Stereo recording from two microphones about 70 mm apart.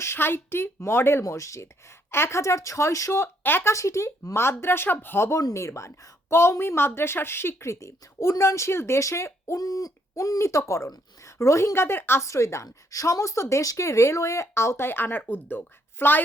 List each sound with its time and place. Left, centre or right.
0.0 s a woman's voice: left
1.2 s speech: left
3.7 s a woman's voice: left
9.6 s speech: left